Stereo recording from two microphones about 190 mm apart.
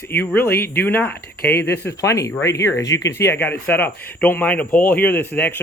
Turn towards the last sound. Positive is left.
turn(degrees=10)  # may be behind; listen again after turning